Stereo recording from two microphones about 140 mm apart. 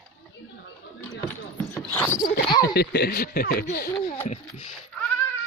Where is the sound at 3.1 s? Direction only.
90° left.